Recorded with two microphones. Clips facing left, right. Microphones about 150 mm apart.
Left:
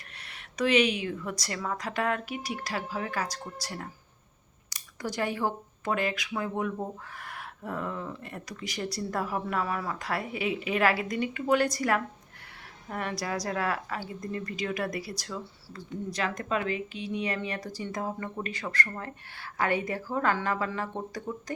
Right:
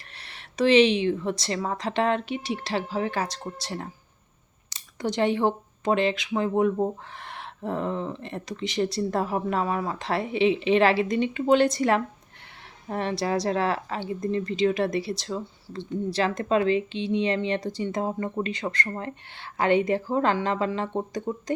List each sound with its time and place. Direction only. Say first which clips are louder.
0.2 s a woman's voice: right 5 dB; 30° right (ahead or behind)